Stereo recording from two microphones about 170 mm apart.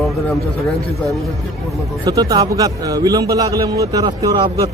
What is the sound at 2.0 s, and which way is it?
A man's voice, 25° right (ahead or behind).